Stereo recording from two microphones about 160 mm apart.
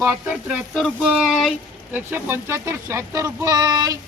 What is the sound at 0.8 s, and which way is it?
Speech, centre (ahead or behind).